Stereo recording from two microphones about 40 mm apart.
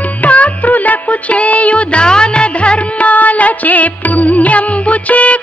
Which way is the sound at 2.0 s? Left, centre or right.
Left.